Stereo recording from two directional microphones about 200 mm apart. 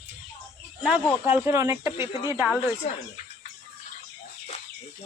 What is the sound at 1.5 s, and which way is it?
Speech, 15° right (ahead or behind).